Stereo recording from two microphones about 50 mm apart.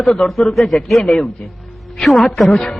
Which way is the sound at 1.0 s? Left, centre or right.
Centre.